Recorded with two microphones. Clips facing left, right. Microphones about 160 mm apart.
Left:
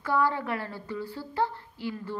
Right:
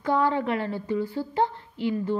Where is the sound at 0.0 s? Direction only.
20° right (ahead or behind).